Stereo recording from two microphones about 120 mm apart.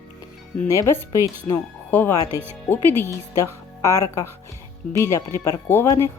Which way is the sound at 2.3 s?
20° right (ahead or behind).